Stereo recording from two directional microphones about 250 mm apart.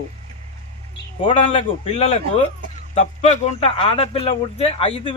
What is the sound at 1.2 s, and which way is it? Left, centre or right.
Speech, left.